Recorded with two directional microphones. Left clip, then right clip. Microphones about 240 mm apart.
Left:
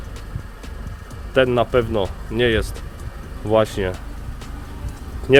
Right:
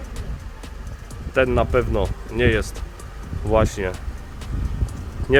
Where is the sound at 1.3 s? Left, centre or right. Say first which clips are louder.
Left 2 dB; centre.